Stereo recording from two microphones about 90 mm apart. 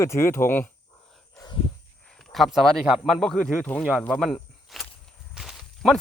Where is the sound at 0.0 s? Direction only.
30° left (ahead or behind).